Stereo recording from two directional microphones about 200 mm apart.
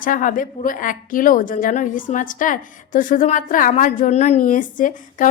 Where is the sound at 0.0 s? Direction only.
40° left (ahead or behind).